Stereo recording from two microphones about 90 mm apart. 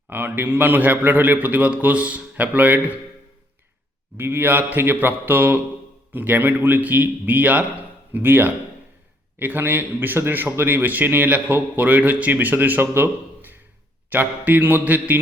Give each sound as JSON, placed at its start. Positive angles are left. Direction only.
{"t": 0.1, "sound": "a man's voice", "side_deg": -25}
{"t": 4.2, "sound": "a man's voice", "side_deg": -25}